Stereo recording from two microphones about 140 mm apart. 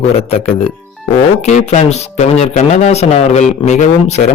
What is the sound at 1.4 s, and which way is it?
A man's voice, 55° left (ahead or behind).